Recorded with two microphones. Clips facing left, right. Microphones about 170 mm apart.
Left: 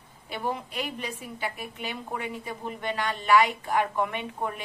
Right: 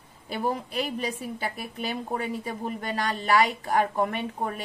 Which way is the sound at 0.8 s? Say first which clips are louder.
Right 5 dB; 40° right (ahead or behind).